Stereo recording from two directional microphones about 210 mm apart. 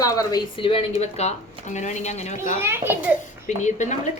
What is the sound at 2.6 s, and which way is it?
Speech, 10° right (ahead or behind).